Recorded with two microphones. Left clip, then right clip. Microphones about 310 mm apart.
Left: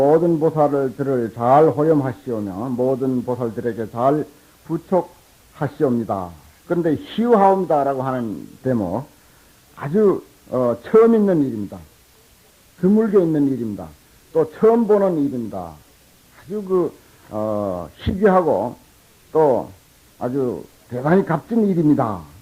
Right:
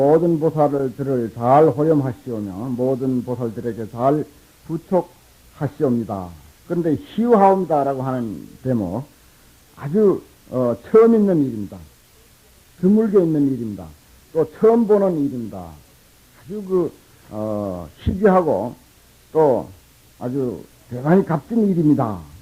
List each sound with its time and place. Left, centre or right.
0.0 s a man's voice: right
12.8 s a man's voice: right